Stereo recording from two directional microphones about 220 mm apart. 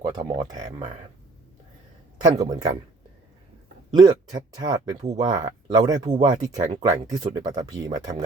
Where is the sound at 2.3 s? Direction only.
20° right (ahead or behind).